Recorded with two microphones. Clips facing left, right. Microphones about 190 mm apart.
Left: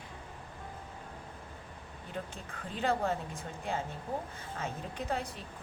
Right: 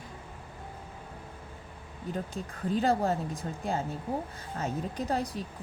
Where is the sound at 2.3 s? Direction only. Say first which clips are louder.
Right 11 dB; 40° right (ahead or behind).